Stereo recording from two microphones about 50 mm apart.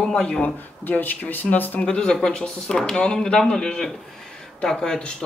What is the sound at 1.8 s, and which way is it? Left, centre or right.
A woman's voice, centre.